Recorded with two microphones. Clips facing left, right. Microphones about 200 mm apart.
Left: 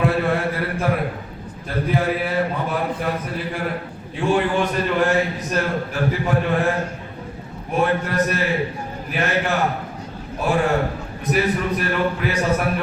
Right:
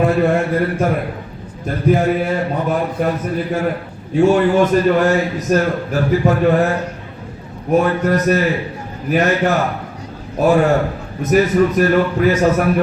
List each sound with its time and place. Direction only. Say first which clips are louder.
0.0 s a man's voice: right 5 dB; 45° right (ahead or behind)
4.1 s a man's voice: right 7 dB; 45° right (ahead or behind)
7.7 s a man's voice: right 6 dB; 40° right (ahead or behind)